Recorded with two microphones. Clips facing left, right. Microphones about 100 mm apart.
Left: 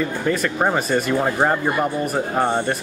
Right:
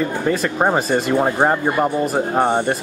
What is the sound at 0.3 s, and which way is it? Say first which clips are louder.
Speech: right 2 dB; 20° right (ahead or behind).